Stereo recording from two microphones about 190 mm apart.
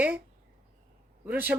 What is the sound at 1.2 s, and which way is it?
Speech, 10° right (ahead or behind).